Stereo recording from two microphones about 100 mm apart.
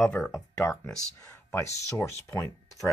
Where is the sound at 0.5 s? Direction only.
30° left (ahead or behind).